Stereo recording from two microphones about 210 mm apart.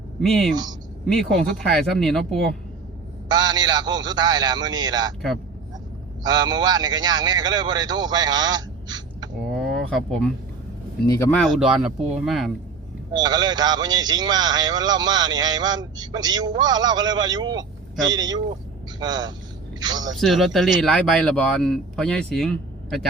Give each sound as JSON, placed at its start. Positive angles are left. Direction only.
{"t": 0.2, "sound": "speech", "side_deg": 0}
{"t": 3.2, "sound": "a man's voice", "side_deg": -20}
{"t": 6.2, "sound": "speech", "side_deg": -20}
{"t": 9.5, "sound": "a sound", "side_deg": 0}
{"t": 11.0, "sound": "speech", "side_deg": 15}
{"t": 13.1, "sound": "a man's voice", "side_deg": -20}
{"t": 20.1, "sound": "speech", "side_deg": 0}